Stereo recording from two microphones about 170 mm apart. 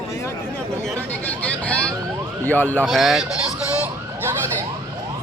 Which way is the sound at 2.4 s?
10° left (ahead or behind).